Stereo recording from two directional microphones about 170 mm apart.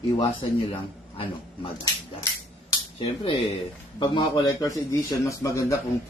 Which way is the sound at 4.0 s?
25° left (ahead or behind).